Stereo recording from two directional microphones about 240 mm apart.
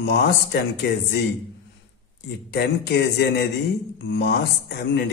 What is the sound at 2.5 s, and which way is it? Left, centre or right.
A man's voice, left.